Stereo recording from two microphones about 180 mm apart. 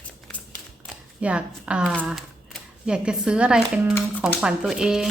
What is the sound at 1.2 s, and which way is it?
A woman's voice, 5° right (ahead or behind).